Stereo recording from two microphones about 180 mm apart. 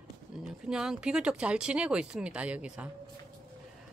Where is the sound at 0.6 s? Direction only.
5° right (ahead or behind).